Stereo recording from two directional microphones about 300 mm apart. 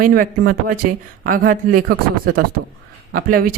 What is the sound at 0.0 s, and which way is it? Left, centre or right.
Speech, right.